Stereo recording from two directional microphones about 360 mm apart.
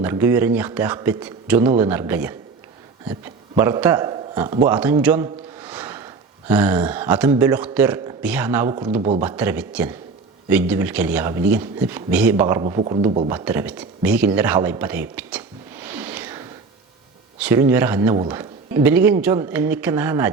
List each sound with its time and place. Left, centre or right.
0.0 s a man's voice: centre
9.0 s speech: centre
9.2 s a man's voice: centre